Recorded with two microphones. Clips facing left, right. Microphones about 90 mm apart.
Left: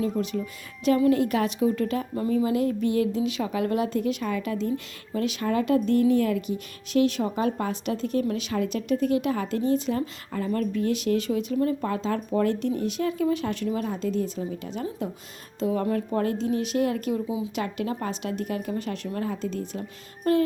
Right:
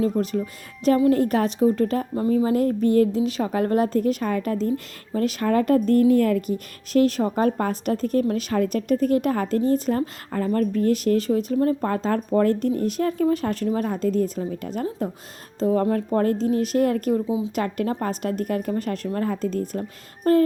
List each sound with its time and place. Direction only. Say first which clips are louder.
0.2 s a woman's voice: right 4 dB; 40° right (ahead or behind)
17.2 s speech: right 5 dB; 30° right (ahead or behind)
17.5 s a woman's voice: right 4 dB; 45° right (ahead or behind)